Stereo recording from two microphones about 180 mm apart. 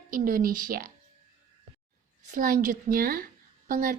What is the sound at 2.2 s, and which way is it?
A woman's voice, 45° right (ahead or behind).